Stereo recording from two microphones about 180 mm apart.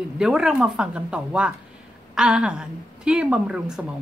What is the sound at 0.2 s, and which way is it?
A woman's voice, 5° right (ahead or behind).